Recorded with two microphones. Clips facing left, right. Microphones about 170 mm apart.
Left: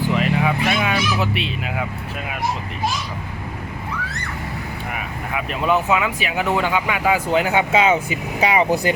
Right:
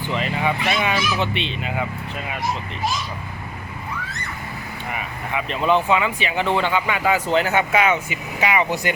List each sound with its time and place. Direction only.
0.1 s speech: 5° left (ahead or behind)
4.9 s speech: 5° left (ahead or behind); by 7.9 s 20° left (ahead or behind)
7.9 s speech: 35° left (ahead or behind)